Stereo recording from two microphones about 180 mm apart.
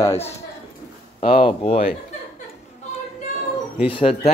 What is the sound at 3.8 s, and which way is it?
Speech, 30° left (ahead or behind).